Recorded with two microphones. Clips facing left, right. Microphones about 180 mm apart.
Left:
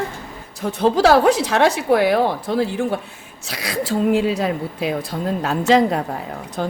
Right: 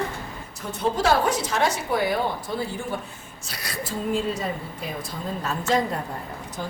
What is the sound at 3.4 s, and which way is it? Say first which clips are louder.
A woman's voice: left 9 dB; 90° left.